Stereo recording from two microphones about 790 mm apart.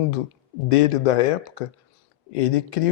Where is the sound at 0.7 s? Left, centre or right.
Left.